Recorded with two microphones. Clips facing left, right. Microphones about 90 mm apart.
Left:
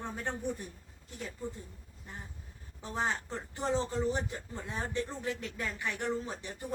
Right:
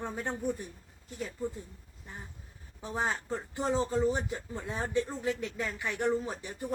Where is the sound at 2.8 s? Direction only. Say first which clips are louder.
Right 1 dB; 15° right (ahead or behind).